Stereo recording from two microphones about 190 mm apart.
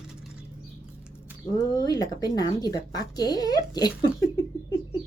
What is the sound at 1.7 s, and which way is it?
Speech, 20° left (ahead or behind).